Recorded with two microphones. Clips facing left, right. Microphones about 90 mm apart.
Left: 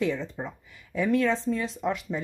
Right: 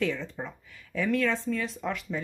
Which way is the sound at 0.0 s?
20° left (ahead or behind).